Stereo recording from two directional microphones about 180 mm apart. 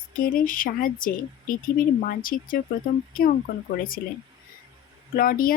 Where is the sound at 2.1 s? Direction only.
50° left (ahead or behind).